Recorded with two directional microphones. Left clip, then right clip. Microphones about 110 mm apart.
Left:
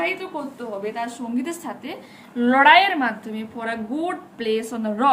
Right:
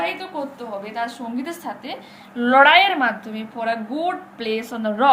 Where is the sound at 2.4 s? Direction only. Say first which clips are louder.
Right 1 dB; 15° left (ahead or behind).